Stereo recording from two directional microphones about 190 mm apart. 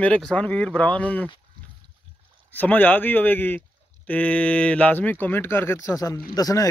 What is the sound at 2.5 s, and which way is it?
Speech, 10° left (ahead or behind).